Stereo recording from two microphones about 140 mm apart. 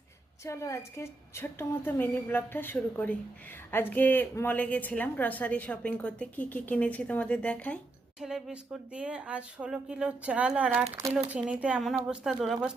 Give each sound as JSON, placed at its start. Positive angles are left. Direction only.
{"t": 0.4, "sound": "a woman's voice", "side_deg": 20}
{"t": 8.2, "sound": "speech", "side_deg": -5}